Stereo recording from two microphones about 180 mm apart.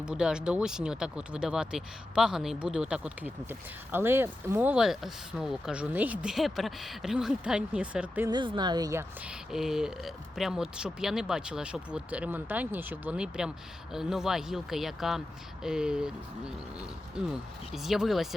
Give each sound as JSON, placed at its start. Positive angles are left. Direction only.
{"t": 0.0, "sound": "speech", "side_deg": -5}
{"t": 8.3, "sound": "a woman's voice", "side_deg": -25}
{"t": 9.5, "sound": "speech", "side_deg": 0}
{"t": 17.2, "sound": "speech", "side_deg": -5}